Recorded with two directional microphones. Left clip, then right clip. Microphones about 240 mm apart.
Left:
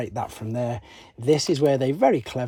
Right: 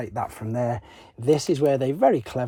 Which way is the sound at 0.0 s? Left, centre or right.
Centre.